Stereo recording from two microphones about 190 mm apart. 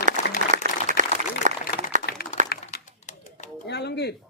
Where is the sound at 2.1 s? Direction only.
55° left (ahead or behind).